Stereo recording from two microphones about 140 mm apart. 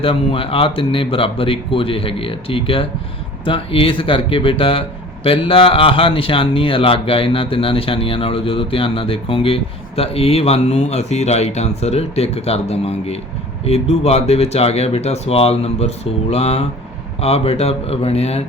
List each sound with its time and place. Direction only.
0.0 s speech: 40° left (ahead or behind)